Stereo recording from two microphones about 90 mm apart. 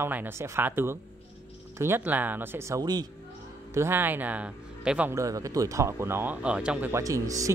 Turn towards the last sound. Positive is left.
turn(degrees=-40)  # may be behind; listen again after turning